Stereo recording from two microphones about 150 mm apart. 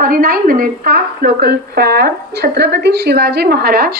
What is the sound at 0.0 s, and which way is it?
A woman's voice, 70° right (ahead or behind).